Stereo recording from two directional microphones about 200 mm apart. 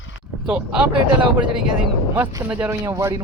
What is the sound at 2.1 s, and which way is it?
Speech, 10° right (ahead or behind).